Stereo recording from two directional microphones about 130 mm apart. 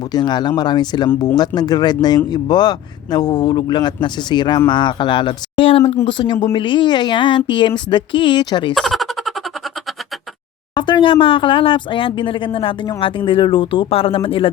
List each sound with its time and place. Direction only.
0.1 s speech: 35° left (ahead or behind)
8.7 s a sound: centre (ahead or behind)
10.8 s speech: 35° left (ahead or behind)